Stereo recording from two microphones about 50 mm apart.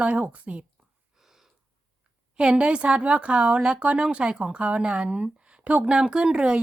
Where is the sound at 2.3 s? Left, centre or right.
Centre.